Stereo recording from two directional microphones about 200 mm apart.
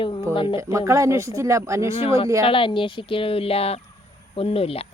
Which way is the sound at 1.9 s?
30° left (ahead or behind).